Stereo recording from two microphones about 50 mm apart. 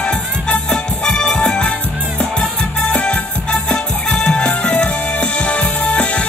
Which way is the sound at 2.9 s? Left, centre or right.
Left.